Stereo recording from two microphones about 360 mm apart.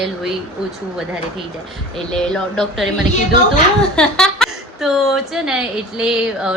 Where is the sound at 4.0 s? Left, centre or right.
Centre.